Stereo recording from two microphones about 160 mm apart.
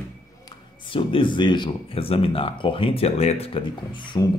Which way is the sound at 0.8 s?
35° left (ahead or behind).